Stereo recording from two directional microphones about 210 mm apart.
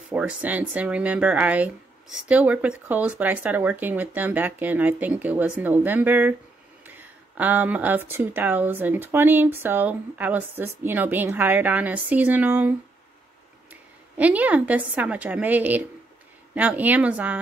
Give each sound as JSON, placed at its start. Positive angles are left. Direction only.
{"t": 0.1, "sound": "speech", "side_deg": -5}